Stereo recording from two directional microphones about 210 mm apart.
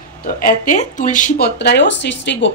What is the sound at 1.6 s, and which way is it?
Speech, 55° left (ahead or behind).